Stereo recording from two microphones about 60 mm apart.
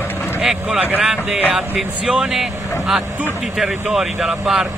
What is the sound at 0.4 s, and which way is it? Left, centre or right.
Speech, centre.